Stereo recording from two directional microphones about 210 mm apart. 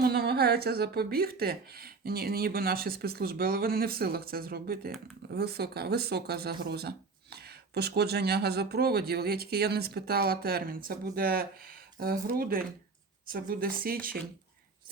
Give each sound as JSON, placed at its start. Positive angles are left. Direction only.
{"t": 0.0, "sound": "speech", "side_deg": -50}